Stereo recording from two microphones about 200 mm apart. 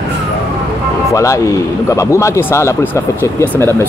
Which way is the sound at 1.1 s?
15° left (ahead or behind).